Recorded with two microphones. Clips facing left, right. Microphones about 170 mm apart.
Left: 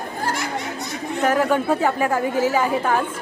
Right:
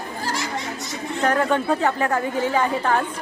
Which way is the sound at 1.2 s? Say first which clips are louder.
Left 1 dB; 10° left (ahead or behind).